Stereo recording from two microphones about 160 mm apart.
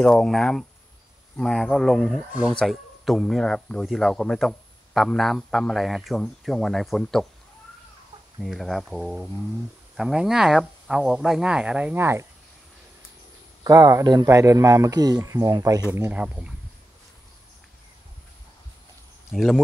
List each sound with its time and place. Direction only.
0.0 s speech: 5° left (ahead or behind)
8.4 s speech: centre (ahead or behind); by 12.3 s 15° right (ahead or behind)
13.7 s speech: 20° right (ahead or behind)
19.3 s speech: centre (ahead or behind)